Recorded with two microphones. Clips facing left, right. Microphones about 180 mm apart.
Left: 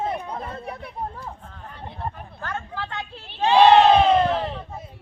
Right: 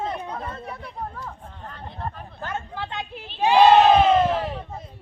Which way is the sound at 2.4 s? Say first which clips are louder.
Right 1 dB; 20° right (ahead or behind).